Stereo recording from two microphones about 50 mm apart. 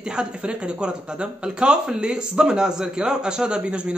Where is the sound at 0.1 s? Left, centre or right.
Centre.